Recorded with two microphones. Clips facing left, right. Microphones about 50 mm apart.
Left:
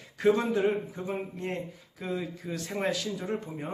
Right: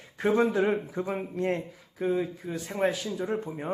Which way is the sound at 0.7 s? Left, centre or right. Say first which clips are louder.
Right 2 dB; right.